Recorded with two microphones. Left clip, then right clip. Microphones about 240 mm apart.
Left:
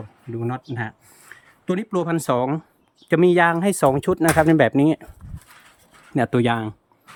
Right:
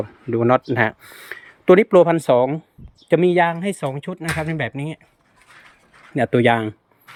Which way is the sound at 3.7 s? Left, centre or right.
Left.